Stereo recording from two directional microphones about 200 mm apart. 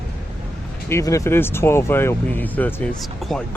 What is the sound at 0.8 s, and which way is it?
Speech, 15° left (ahead or behind).